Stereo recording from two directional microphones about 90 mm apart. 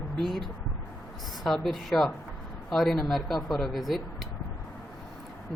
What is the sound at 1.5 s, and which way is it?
Speech, 5° left (ahead or behind).